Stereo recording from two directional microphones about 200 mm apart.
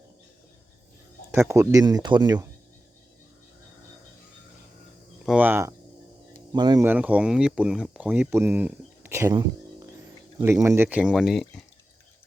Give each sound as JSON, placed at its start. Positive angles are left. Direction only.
{"t": 1.3, "sound": "speech", "side_deg": -10}
{"t": 5.2, "sound": "speech", "side_deg": -5}